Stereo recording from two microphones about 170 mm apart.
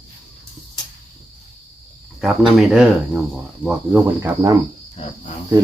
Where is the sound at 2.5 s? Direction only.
Centre (ahead or behind).